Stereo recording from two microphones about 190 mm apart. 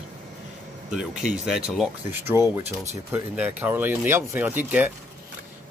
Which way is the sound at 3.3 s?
10° right (ahead or behind).